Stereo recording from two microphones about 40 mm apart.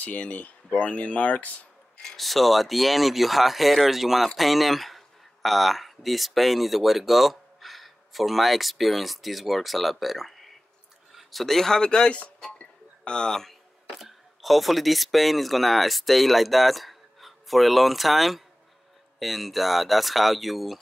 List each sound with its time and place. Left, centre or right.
0.0 s speech: left
2.1 s speech: centre
12.4 s a sound: left
13.3 s speech: centre
13.9 s speech: centre